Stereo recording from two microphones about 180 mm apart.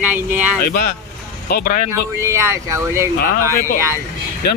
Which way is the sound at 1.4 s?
60° left (ahead or behind).